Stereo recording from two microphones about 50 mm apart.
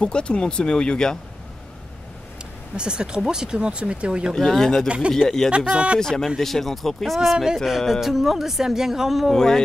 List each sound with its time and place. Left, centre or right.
0.0 s speech: centre
2.7 s speech: centre
4.3 s speech: centre
4.8 s speech: right
5.9 s speech: centre